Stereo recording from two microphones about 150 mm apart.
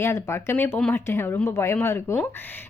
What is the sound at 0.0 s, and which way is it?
A woman's voice, 20° left (ahead or behind).